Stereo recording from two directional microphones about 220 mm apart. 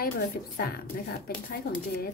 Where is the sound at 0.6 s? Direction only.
45° left (ahead or behind).